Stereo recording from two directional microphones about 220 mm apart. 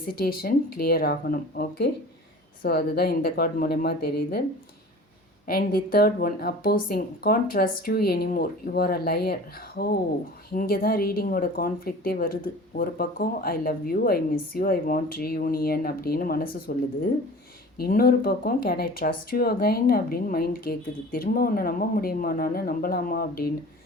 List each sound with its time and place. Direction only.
0.0 s a woman's voice: 40° left (ahead or behind)
5.5 s a woman's voice: 40° left (ahead or behind)